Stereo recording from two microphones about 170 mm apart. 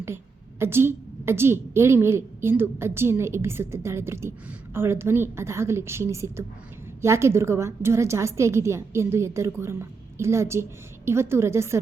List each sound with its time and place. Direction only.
0.6 s a woman's voice: 15° right (ahead or behind)